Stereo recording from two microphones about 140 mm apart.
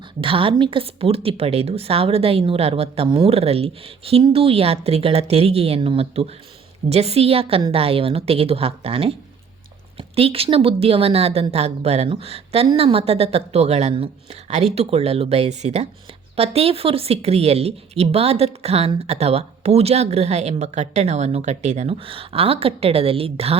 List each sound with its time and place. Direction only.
0.2 s speech: 40° right (ahead or behind); by 21.9 s 55° right (ahead or behind)
22.0 s speech: 40° right (ahead or behind)